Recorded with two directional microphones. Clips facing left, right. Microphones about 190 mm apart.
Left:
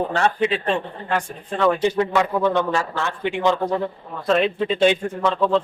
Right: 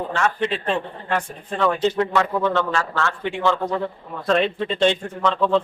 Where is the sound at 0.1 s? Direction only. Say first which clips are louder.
Left 2 dB; 35° left (ahead or behind).